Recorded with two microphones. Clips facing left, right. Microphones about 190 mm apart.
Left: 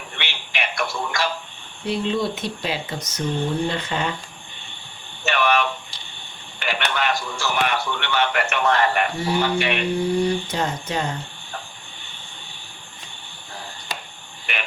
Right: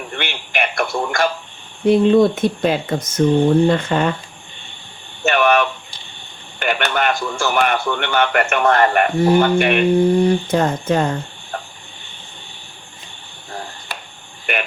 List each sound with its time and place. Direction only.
0.1 s a man's voice: 55° right (ahead or behind)
5.2 s a man's voice: 50° right (ahead or behind)